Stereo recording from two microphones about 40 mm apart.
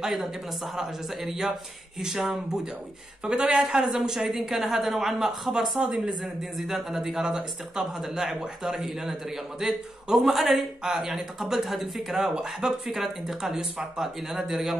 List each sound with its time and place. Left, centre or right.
0.0 s speech: centre
5.8 s speech: centre
6.6 s a man's voice: centre
10.1 s speech: centre